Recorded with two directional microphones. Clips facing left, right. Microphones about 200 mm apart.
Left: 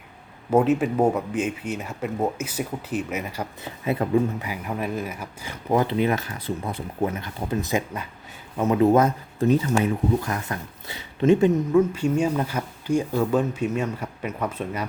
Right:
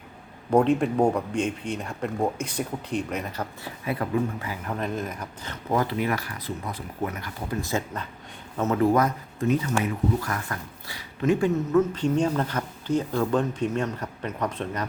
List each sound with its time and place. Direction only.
0.5 s speech: 5° left (ahead or behind)
3.6 s speech: 25° left (ahead or behind)
10.2 s speech: 20° left (ahead or behind)